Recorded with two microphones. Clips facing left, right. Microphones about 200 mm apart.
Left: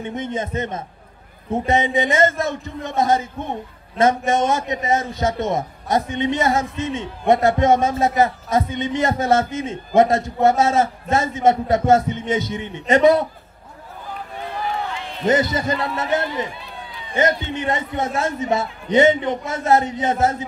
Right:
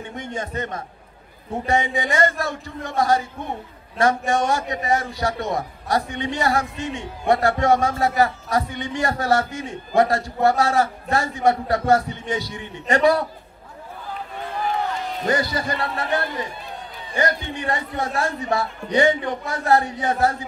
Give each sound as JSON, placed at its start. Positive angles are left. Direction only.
{"t": 0.0, "sound": "a man's voice", "side_deg": 20}
{"t": 15.2, "sound": "a man's voice", "side_deg": 20}
{"t": 16.4, "sound": "run", "side_deg": -50}
{"t": 17.1, "sound": "a man's voice", "side_deg": 20}